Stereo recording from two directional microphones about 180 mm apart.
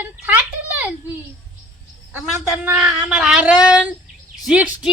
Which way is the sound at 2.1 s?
5° right (ahead or behind).